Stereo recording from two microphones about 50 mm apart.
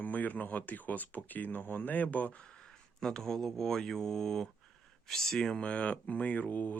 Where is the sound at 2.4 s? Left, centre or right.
Centre.